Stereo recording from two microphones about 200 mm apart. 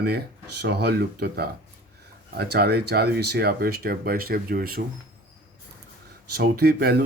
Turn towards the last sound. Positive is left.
turn(degrees=-50)  # may be behind; listen again after turning